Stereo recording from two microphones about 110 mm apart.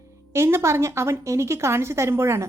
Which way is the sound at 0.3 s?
25° right (ahead or behind).